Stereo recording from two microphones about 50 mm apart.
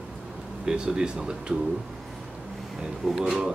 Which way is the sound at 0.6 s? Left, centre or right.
Centre.